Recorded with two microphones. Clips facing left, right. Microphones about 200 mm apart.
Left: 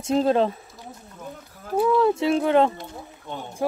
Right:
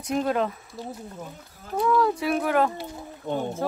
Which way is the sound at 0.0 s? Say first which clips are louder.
Left 5 dB; 25° left (ahead or behind).